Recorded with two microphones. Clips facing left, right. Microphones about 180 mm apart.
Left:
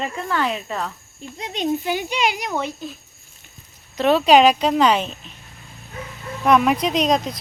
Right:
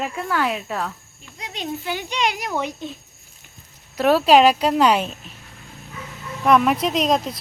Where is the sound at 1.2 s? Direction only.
25° left (ahead or behind); by 2.6 s centre (ahead or behind).